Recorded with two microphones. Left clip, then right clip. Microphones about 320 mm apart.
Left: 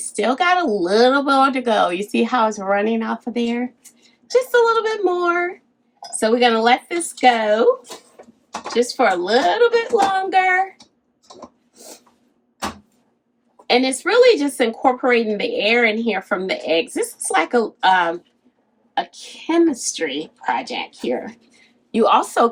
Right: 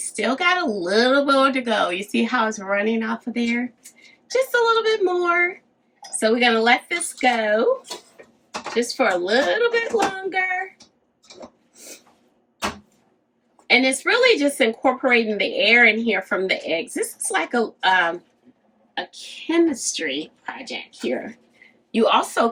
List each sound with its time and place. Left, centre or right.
0.2 s a woman's voice: centre
8.7 s a woman's voice: centre
13.7 s a woman's voice: centre
20.0 s a woman's voice: centre